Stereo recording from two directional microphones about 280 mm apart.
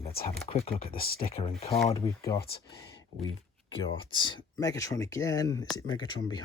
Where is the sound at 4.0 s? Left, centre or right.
Centre.